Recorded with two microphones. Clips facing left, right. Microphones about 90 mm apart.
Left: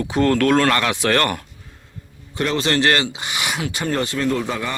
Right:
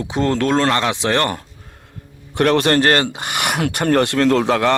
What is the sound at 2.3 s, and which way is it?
Speech, 60° right (ahead or behind).